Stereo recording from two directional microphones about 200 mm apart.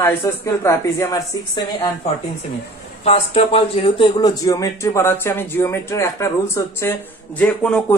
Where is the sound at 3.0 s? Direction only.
30° left (ahead or behind).